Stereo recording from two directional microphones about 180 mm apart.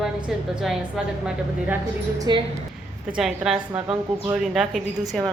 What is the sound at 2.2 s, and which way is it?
Speech, 25° right (ahead or behind).